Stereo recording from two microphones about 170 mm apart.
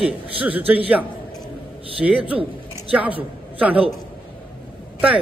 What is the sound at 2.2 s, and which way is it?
Speech, 30° right (ahead or behind).